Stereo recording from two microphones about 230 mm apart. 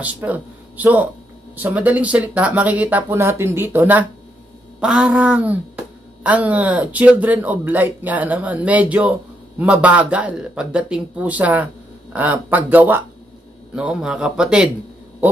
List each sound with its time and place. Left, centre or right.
0.0 s speech: centre